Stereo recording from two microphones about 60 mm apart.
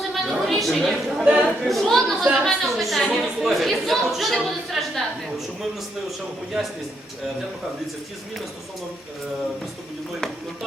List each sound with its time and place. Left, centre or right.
0.1 s chatter: centre
1.2 s speech: centre
1.6 s a woman's voice: centre